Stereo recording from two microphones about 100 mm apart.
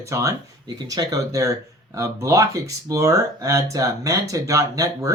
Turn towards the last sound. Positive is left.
turn(degrees=-35)  # may be behind; listen again after turning